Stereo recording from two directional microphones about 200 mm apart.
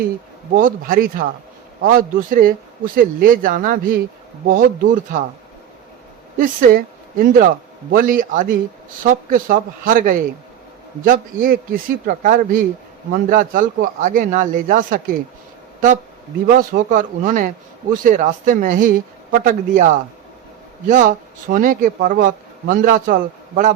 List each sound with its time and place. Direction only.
0.5 s speech: 45° right (ahead or behind)
6.3 s speech: 45° right (ahead or behind)
16.5 s speech: 45° right (ahead or behind)